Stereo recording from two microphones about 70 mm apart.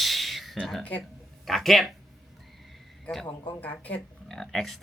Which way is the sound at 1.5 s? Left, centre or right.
Centre.